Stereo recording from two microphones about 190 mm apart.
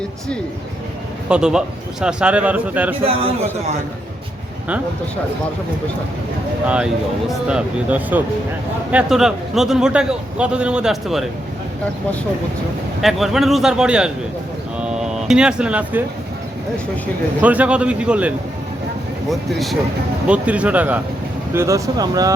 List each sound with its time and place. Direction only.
1.3 s a man's voice: 5° right (ahead or behind)
6.7 s a man's voice: 5° right (ahead or behind)
13.0 s a man's voice: centre (ahead or behind)
17.4 s a man's voice: 5° right (ahead or behind)